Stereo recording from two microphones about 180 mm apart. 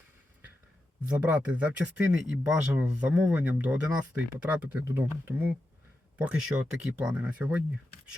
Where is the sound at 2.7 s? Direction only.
10° right (ahead or behind).